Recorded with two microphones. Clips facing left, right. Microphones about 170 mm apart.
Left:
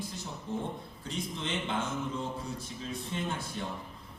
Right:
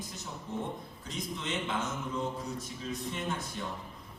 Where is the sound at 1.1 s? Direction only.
30° left (ahead or behind).